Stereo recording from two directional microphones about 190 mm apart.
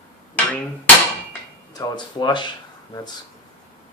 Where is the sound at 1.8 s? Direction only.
25° left (ahead or behind).